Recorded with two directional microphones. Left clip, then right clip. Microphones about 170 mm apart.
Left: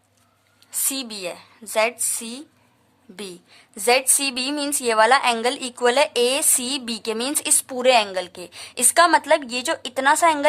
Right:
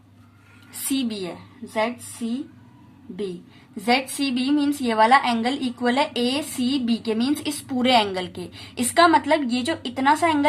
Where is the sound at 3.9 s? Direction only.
45° left (ahead or behind).